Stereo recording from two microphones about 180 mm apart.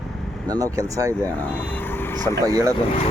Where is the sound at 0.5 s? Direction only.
20° right (ahead or behind).